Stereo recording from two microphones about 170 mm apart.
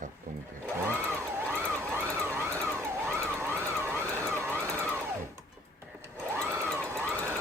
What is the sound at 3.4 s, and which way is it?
Emergency vehicle, 10° right (ahead or behind).